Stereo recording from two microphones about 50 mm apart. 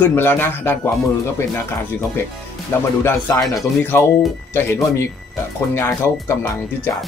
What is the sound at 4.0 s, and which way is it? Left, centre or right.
Speech, left.